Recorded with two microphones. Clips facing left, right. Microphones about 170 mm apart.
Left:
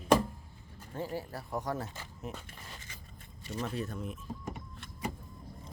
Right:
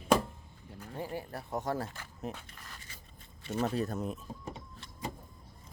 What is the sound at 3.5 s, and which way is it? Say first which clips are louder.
Speech: right 5 dB; 40° right (ahead or behind).